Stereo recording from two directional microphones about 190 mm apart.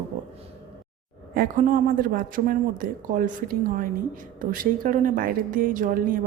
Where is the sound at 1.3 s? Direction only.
45° right (ahead or behind).